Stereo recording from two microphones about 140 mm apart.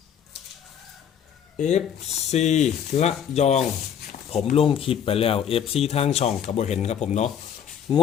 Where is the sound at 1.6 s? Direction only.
55° left (ahead or behind).